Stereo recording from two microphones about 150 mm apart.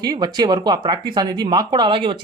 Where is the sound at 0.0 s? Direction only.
25° right (ahead or behind).